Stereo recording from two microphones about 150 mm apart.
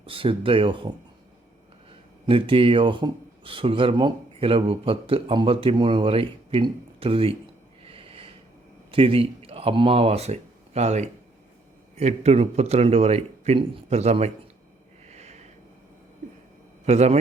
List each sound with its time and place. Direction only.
0.1 s speech: 35° right (ahead or behind)
2.2 s speech: 35° right (ahead or behind)
7.9 s snort: 40° right (ahead or behind)
8.9 s a man's voice: 40° right (ahead or behind)
15.0 s a sound: 50° right (ahead or behind)
16.8 s a man's voice: 45° right (ahead or behind)